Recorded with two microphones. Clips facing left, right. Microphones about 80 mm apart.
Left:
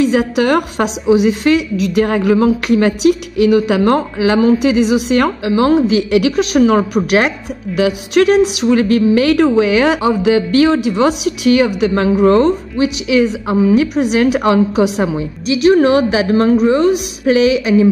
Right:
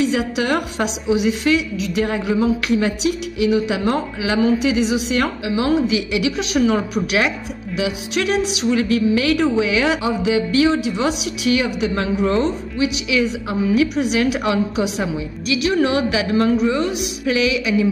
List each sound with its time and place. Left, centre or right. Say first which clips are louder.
0.0 s a woman's voice: left 6 dB; left